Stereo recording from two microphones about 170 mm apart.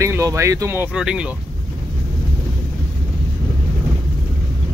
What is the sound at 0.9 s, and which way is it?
Speech, 5° right (ahead or behind).